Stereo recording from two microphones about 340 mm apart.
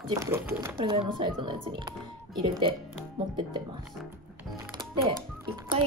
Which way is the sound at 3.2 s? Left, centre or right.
Centre.